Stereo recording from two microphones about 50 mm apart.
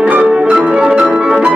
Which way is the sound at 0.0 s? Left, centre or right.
Right.